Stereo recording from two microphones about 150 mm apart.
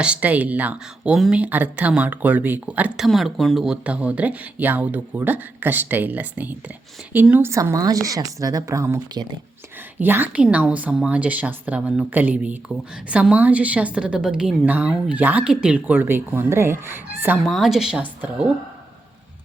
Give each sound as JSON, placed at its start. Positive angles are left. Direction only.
{"t": 0.0, "sound": "a woman's voice", "side_deg": -10}
{"t": 17.4, "sound": "speech", "side_deg": 0}